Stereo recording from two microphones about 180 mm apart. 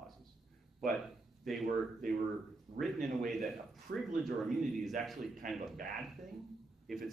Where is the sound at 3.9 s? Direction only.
65° right (ahead or behind).